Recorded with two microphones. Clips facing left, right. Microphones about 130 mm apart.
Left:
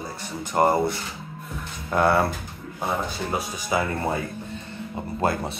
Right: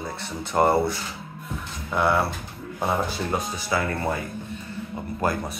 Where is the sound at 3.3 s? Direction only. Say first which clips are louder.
Left 1 dB; 15° left (ahead or behind).